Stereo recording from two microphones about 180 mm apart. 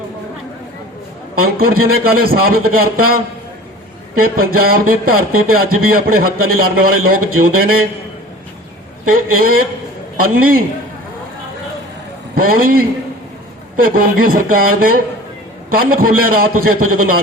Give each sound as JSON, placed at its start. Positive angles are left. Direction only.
{"t": 1.4, "sound": "speech", "side_deg": -55}
{"t": 4.2, "sound": "speech", "side_deg": -55}
{"t": 9.0, "sound": "a man's voice", "side_deg": -50}
{"t": 12.3, "sound": "a man's voice", "side_deg": -55}